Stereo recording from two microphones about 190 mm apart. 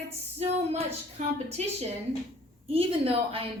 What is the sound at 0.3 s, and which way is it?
Speech, 35° right (ahead or behind).